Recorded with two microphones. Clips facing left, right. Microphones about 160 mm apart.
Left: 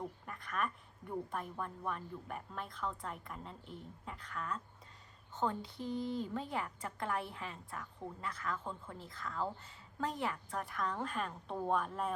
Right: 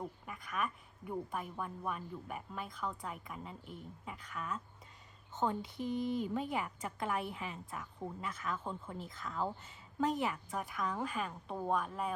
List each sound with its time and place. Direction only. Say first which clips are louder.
0.3 s a woman's voice: even; 5° right (ahead or behind)
5.3 s a woman's voice: right 1 dB; 20° right (ahead or behind)
10.5 s a woman's voice: right 1 dB; 5° right (ahead or behind)